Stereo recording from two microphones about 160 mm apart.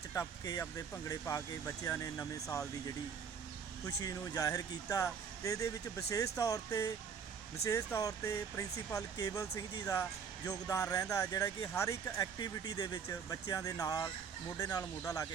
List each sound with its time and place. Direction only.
0.1 s speech: 20° left (ahead or behind)